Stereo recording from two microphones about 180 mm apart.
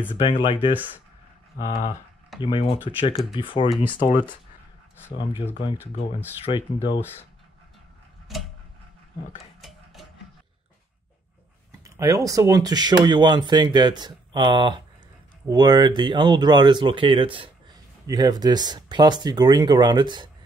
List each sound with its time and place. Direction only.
0.3 s speech: 30° left (ahead or behind)
5.9 s speech: 30° left (ahead or behind)
8.3 s tick-tock: centre (ahead or behind)
9.4 s stir: centre (ahead or behind)
11.8 s speech: 20° right (ahead or behind)